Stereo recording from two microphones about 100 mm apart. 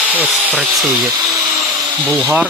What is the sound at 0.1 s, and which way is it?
Speech, 15° right (ahead or behind).